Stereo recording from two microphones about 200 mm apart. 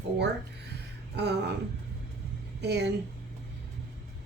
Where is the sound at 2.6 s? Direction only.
55° right (ahead or behind).